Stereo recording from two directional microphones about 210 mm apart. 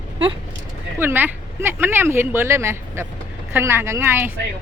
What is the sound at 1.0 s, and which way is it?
Speech, 10° right (ahead or behind).